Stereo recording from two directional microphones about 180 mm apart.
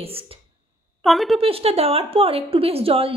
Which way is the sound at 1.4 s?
35° right (ahead or behind).